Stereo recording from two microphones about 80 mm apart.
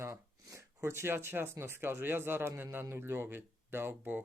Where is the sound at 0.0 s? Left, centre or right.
Right.